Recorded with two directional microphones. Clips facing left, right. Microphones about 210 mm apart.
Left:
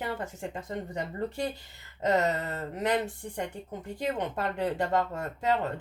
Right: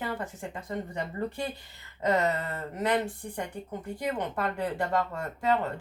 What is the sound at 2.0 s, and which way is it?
Speech, 20° left (ahead or behind).